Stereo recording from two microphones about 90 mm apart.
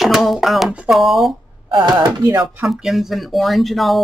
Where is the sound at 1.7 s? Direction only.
55° right (ahead or behind).